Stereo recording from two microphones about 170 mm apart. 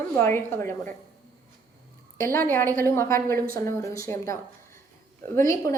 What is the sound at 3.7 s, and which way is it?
Speech, 15° left (ahead or behind).